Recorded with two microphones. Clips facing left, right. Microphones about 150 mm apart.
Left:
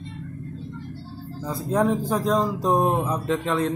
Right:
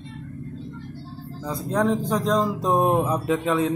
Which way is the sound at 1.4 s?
5° left (ahead or behind).